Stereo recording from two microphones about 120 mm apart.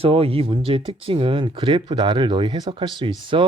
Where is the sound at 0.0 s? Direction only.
55° right (ahead or behind).